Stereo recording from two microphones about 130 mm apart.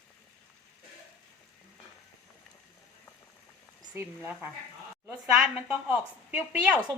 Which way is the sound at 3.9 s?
15° right (ahead or behind).